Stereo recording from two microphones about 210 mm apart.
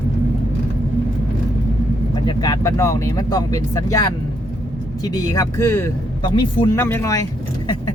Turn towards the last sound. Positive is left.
turn(degrees=15)  # may be behind; listen again after turning